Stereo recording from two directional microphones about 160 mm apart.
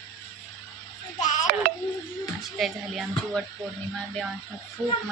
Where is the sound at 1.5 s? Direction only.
65° right (ahead or behind).